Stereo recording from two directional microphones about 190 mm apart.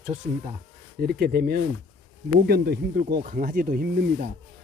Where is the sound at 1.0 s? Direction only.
55° right (ahead or behind).